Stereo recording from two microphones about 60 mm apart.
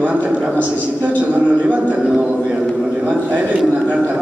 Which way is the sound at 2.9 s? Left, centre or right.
Right.